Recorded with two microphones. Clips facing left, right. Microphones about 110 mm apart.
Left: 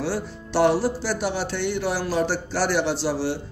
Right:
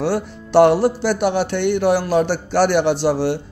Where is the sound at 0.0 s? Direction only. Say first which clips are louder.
Right 6 dB; 60° right (ahead or behind).